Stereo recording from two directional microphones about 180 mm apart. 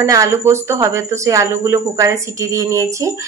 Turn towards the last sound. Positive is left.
turn(degrees=-15)  # may be behind; listen again after turning